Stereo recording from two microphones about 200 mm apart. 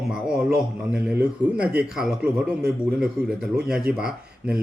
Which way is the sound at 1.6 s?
5° right (ahead or behind).